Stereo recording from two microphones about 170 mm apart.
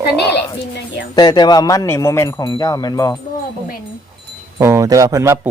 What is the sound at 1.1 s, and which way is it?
Speech, 25° left (ahead or behind).